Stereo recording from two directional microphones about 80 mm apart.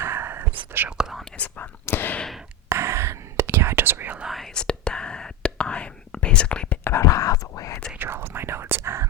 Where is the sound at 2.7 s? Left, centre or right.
Right.